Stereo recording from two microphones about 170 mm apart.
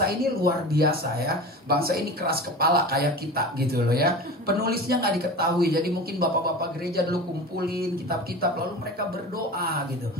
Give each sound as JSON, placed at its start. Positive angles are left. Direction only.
{"t": 0.0, "sound": "speech", "side_deg": -65}